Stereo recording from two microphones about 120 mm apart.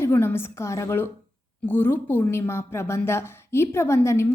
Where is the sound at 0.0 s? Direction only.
20° left (ahead or behind).